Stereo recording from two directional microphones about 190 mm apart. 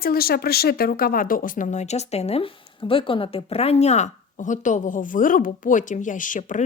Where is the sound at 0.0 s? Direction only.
50° left (ahead or behind).